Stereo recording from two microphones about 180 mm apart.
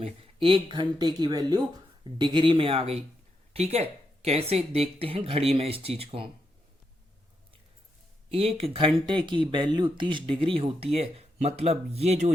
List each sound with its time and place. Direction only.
0.0 s speech: 30° right (ahead or behind)
8.3 s speech: 35° right (ahead or behind)